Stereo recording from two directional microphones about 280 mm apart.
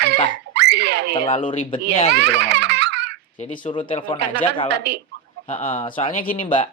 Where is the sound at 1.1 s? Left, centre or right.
Centre.